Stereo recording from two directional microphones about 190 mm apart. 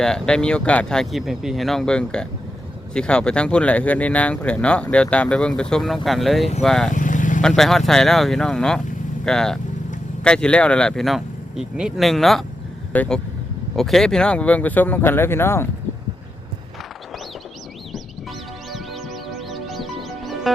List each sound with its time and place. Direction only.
0.0 s speech: 5° left (ahead or behind)
6.9 s vehicle: 45° left (ahead or behind)
7.4 s speech: centre (ahead or behind)
19.3 s music: centre (ahead or behind)